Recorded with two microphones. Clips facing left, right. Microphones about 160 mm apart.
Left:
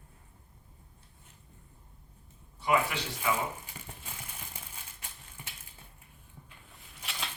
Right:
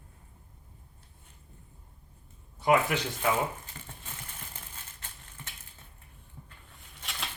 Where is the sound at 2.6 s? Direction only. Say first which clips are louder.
Right 4 dB; 50° right (ahead or behind).